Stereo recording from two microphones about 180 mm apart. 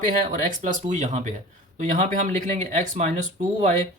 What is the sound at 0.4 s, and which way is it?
Speech, 45° right (ahead or behind).